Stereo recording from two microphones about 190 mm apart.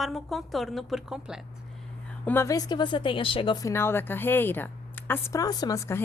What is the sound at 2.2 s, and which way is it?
Speech, 15° left (ahead or behind).